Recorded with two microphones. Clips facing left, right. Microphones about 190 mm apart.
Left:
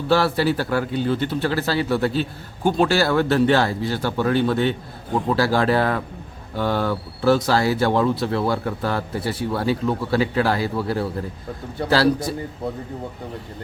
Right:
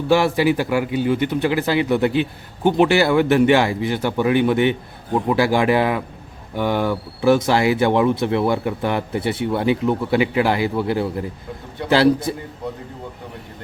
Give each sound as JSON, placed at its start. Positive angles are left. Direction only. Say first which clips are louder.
{"t": 0.1, "sound": "speech", "louder": "right 2 dB", "side_deg": -15}